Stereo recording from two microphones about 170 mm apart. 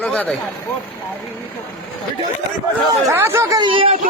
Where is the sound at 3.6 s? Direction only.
30° right (ahead or behind).